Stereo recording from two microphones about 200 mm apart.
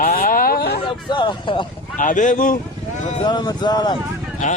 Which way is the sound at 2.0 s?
40° left (ahead or behind).